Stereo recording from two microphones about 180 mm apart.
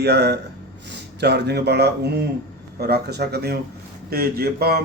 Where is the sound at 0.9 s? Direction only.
70° right (ahead or behind).